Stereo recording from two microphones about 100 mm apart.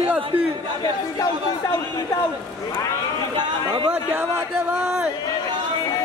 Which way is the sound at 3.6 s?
55° right (ahead or behind).